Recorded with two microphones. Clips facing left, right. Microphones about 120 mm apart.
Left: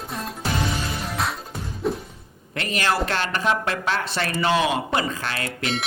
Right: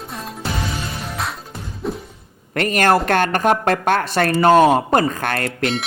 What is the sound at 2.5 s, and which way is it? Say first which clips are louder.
Speech: right 8 dB; 50° right (ahead or behind).